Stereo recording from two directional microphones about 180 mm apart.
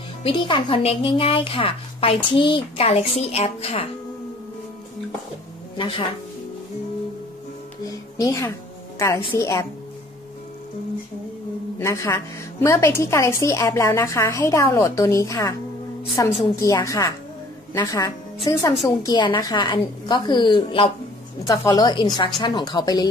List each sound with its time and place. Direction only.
0.2 s speech: 30° left (ahead or behind)
5.8 s a woman's voice: 30° left (ahead or behind)
7.8 s a woman's voice: 20° left (ahead or behind)
11.8 s a woman's voice: 15° left (ahead or behind)